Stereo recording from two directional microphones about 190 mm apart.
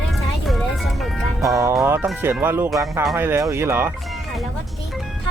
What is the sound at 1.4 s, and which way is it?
Speech, 15° right (ahead or behind).